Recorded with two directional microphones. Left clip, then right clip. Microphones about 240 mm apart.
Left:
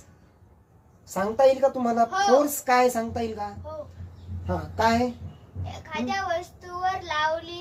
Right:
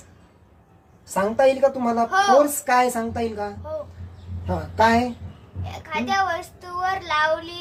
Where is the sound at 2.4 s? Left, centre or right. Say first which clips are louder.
Right 2 dB; centre.